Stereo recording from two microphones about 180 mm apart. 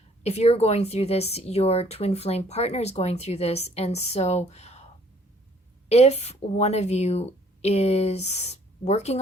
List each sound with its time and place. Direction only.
0.2 s speech: 35° left (ahead or behind)
5.9 s speech: 35° left (ahead or behind)